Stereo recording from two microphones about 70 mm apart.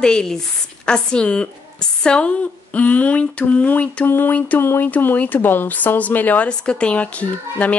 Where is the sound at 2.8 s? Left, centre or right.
Left.